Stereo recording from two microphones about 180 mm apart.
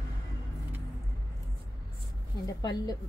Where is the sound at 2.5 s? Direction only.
20° left (ahead or behind).